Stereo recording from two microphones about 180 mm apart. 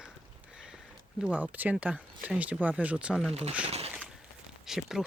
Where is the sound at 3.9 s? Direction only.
5° right (ahead or behind).